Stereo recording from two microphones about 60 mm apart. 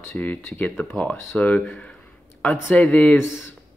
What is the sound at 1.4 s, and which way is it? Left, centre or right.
Speech, centre.